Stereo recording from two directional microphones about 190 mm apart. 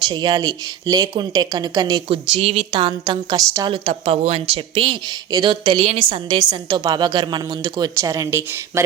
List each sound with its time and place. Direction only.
0.1 s a woman's voice: 25° right (ahead or behind)